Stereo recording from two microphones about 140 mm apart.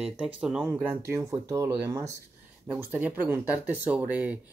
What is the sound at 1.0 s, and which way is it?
Speech, 20° right (ahead or behind).